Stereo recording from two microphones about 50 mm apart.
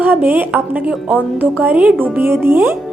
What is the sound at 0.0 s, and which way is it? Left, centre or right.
A woman's voice, right.